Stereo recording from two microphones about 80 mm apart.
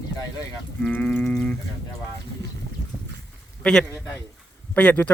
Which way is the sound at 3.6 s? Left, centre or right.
Centre.